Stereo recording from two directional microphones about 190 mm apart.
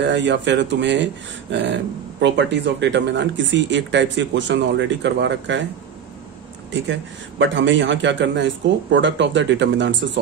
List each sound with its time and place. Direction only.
0.0 s speech: 70° right (ahead or behind)
6.7 s speech: 70° right (ahead or behind)